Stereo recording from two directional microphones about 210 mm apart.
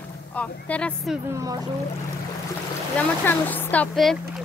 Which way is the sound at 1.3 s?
15° right (ahead or behind).